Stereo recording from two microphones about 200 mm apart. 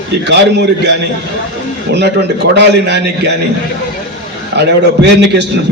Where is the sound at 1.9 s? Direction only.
55° right (ahead or behind).